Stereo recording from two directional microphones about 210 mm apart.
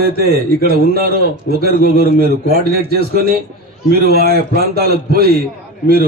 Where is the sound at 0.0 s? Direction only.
45° right (ahead or behind).